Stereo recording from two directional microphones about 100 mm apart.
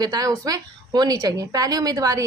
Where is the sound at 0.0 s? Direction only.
40° right (ahead or behind).